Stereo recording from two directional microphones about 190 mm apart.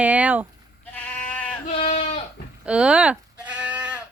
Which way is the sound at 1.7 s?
35° left (ahead or behind).